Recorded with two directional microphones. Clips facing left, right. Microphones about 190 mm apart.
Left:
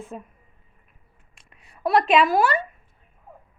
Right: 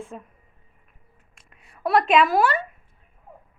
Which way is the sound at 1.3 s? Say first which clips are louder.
Left 1 dB; centre (ahead or behind).